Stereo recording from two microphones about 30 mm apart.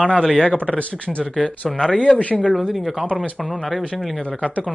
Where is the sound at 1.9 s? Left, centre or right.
Left.